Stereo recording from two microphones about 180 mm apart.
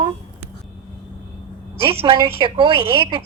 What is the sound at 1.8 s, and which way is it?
Speech, 30° right (ahead or behind).